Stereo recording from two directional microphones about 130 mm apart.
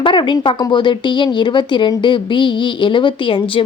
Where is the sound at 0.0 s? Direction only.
40° left (ahead or behind).